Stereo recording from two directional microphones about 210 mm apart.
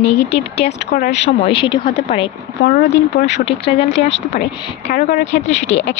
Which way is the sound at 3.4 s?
25° left (ahead or behind).